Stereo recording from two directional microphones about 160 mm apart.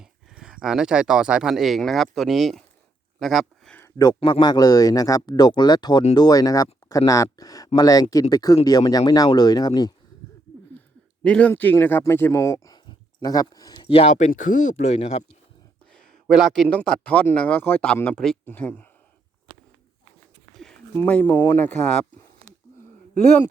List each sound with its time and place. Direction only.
0.0 s speech: 5° right (ahead or behind)
3.8 s a sound: 20° left (ahead or behind)
4.2 s speech: 30° left (ahead or behind)
11.2 s speech: 5° left (ahead or behind); by 15.2 s 45° left (ahead or behind)
16.0 s speech: centre (ahead or behind)
20.9 s speech: 10° left (ahead or behind)